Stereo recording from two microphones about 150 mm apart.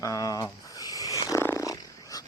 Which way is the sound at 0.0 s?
25° left (ahead or behind).